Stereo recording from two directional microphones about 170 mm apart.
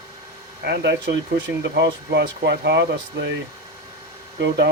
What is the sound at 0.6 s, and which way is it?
Speech, 75° right (ahead or behind).